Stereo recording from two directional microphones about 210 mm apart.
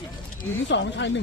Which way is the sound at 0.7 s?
60° left (ahead or behind).